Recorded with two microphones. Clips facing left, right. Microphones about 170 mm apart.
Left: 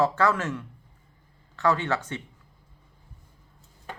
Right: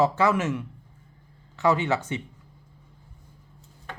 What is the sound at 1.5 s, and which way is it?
Speech, 20° right (ahead or behind).